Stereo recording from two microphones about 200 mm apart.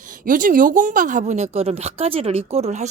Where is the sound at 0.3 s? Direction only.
45° right (ahead or behind).